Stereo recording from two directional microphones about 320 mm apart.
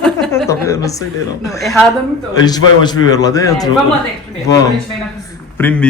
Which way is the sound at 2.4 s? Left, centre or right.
Centre.